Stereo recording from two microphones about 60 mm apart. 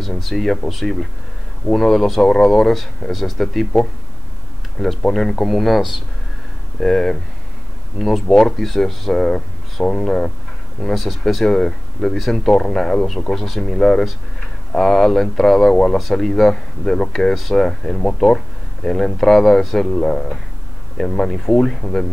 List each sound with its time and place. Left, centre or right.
0.2 s speech: centre
4.7 s speech: centre
16.0 s speech: centre